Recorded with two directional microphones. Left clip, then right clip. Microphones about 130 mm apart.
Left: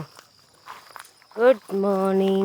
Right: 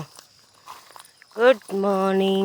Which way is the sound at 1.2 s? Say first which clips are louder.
Right 1 dB; centre (ahead or behind).